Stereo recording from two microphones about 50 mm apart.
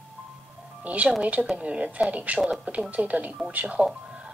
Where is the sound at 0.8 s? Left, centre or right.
Right.